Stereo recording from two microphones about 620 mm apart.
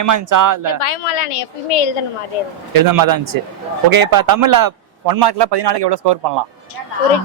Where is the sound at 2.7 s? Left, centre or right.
Right.